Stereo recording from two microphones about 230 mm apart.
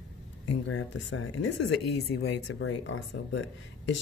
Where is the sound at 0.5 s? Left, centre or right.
Left.